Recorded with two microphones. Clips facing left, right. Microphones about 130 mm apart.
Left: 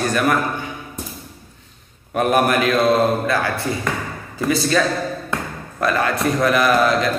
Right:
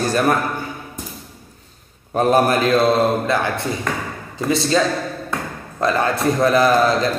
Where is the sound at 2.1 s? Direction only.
30° right (ahead or behind).